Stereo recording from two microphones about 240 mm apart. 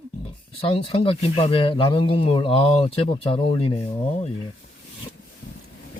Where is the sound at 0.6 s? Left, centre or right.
Left.